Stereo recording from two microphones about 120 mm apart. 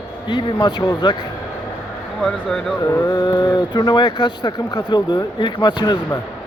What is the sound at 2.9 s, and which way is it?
Speech, 25° left (ahead or behind).